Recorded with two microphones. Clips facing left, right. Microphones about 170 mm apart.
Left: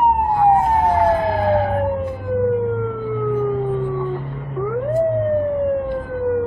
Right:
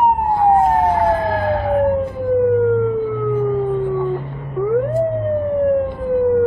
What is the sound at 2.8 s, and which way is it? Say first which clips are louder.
Siren: right 4 dB; centre (ahead or behind).